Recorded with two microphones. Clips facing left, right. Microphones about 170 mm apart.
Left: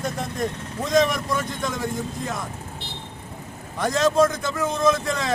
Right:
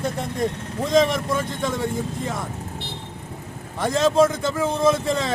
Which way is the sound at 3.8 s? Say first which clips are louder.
Right 1 dB; 30° right (ahead or behind).